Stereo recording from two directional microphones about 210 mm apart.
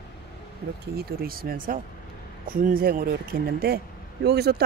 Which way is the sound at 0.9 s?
45° right (ahead or behind).